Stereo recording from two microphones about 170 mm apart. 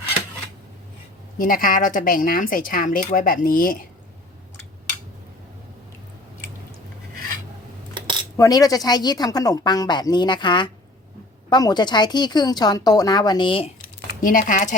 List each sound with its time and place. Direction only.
1.4 s a woman's voice: 55° left (ahead or behind)
7.9 s a sound: 25° right (ahead or behind)
8.4 s speech: 20° left (ahead or behind)
14.2 s speech: 55° left (ahead or behind)